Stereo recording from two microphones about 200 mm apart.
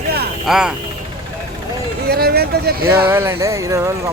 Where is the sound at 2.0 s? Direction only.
50° right (ahead or behind).